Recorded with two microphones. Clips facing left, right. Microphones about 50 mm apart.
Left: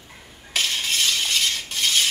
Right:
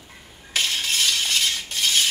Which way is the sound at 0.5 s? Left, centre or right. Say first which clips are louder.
Even; centre.